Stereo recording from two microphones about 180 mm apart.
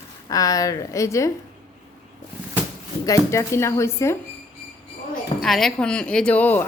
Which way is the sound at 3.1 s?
15° left (ahead or behind).